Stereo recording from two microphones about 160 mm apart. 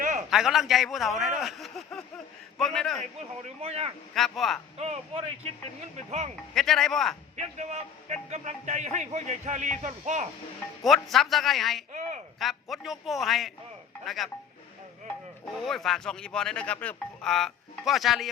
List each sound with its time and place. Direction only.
0.0 s a sound: 50° right (ahead or behind)
0.3 s a man's voice: centre (ahead or behind)
3.6 s speech: 40° right (ahead or behind)
4.1 s speech: centre (ahead or behind)
4.8 s speech: 40° right (ahead or behind)
6.5 s speech: 5° left (ahead or behind)
7.3 s speech: 45° right (ahead or behind)
10.8 s speech: centre (ahead or behind)
15.5 s speech: centre (ahead or behind)